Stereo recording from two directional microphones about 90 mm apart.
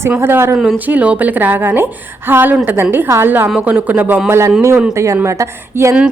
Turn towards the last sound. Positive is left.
turn(degrees=-35)  # may be behind; listen again after turning